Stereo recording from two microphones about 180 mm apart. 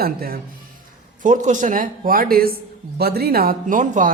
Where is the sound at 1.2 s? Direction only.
45° right (ahead or behind).